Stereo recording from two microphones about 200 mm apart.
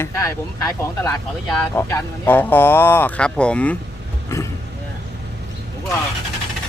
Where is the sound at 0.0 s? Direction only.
15° left (ahead or behind).